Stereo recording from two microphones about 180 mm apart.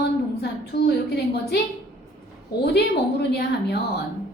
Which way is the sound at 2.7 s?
65° left (ahead or behind).